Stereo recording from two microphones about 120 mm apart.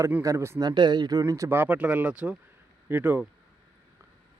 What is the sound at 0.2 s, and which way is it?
Speech, 25° right (ahead or behind).